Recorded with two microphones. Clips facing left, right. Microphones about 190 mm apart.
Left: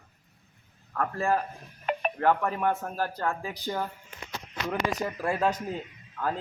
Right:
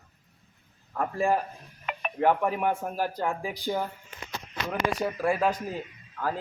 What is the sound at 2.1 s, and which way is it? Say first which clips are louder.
A man's voice: right 3 dB; 15° right (ahead or behind).